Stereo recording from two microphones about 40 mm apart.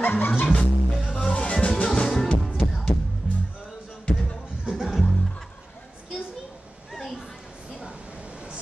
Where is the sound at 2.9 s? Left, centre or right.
Left.